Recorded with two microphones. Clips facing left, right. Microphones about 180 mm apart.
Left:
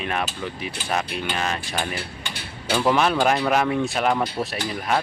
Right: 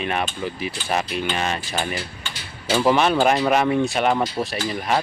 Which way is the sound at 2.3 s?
60° left (ahead or behind).